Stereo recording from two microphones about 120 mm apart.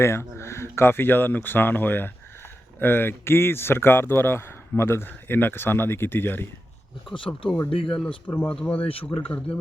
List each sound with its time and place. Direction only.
0.0 s speech: 20° left (ahead or behind)
7.7 s speech: 50° left (ahead or behind)
8.3 s speech: 10° left (ahead or behind)
8.8 s speech: 50° left (ahead or behind)
9.0 s speech: 15° left (ahead or behind)